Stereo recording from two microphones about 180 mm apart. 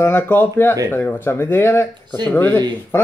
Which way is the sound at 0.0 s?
10° left (ahead or behind).